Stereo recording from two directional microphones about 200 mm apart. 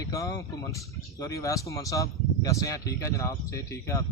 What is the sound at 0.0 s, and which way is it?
Speech, 15° left (ahead or behind).